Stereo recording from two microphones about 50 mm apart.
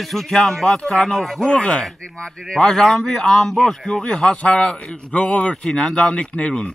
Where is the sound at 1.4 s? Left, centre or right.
Centre.